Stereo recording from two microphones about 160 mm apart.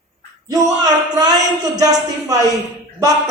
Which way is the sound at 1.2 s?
25° right (ahead or behind).